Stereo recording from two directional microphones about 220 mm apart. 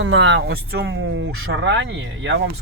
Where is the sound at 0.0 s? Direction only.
60° right (ahead or behind).